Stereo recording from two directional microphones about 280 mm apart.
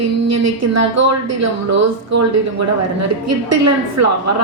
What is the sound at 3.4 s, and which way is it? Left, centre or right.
Speech, right.